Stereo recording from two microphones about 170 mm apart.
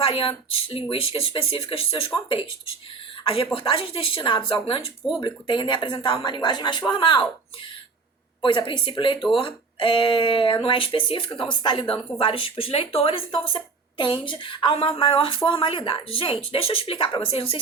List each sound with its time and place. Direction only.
0.0 s speech: 30° left (ahead or behind)
8.4 s speech: 30° left (ahead or behind)